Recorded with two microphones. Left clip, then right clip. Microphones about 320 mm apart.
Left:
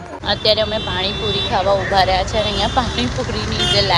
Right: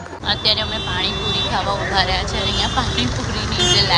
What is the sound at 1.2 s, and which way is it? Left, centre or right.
Speech, right.